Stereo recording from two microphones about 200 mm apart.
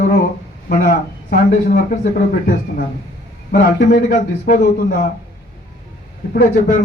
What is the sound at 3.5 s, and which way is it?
A man's voice, 50° left (ahead or behind).